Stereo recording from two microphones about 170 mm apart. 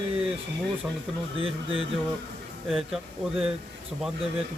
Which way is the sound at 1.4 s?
35° right (ahead or behind).